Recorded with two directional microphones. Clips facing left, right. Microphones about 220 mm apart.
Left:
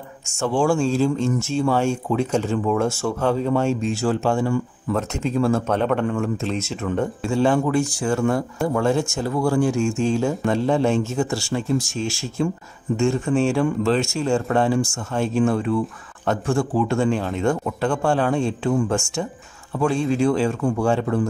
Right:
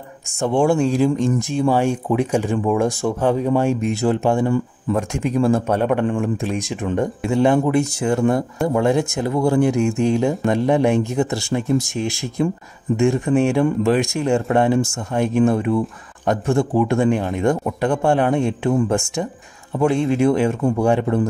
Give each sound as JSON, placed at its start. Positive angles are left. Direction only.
{"t": 0.4, "sound": "speech", "side_deg": -20}